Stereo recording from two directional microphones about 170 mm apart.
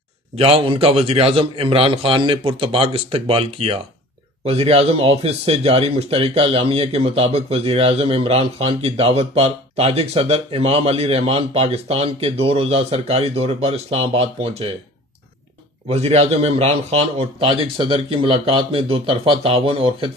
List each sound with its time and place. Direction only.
0.4 s speech: 35° right (ahead or behind)
15.9 s speech: 40° right (ahead or behind)